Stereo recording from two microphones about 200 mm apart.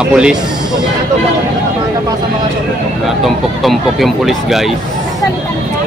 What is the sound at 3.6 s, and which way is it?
Speech, centre (ahead or behind).